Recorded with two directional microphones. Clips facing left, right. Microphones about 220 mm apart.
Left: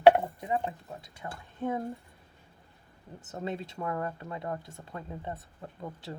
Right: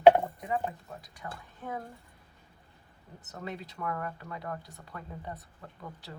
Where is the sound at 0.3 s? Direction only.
25° left (ahead or behind).